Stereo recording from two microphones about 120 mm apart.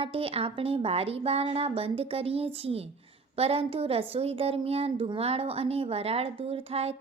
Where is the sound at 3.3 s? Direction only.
55° right (ahead or behind).